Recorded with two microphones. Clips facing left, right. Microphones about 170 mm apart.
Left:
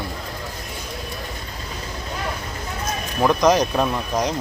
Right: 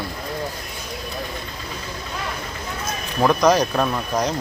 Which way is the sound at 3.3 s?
20° left (ahead or behind).